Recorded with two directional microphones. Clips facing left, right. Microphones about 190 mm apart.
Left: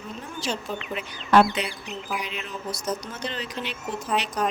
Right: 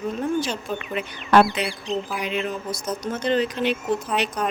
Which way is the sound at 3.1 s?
50° right (ahead or behind).